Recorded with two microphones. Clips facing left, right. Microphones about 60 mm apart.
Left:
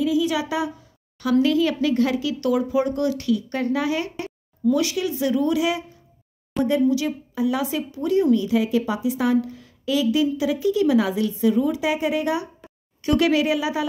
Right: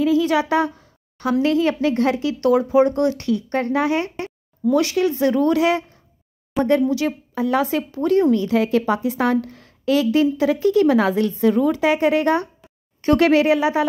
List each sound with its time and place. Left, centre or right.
0.0 s a woman's voice: right
1.4 s speech: right
6.5 s speech: centre
6.9 s a woman's voice: right
13.0 s a woman's voice: right